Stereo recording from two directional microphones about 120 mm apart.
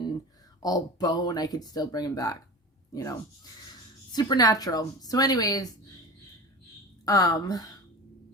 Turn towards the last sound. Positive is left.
turn(degrees=30)  # may be behind; listen again after turning